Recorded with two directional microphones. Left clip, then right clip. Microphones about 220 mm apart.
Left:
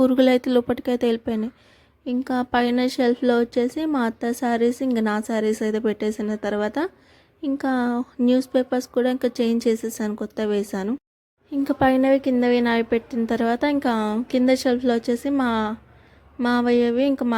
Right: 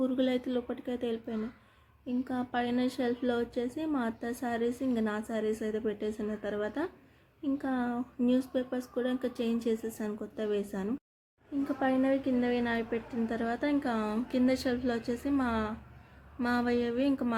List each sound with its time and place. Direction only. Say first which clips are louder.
0.0 s a woman's voice: left 13 dB; 45° left (ahead or behind)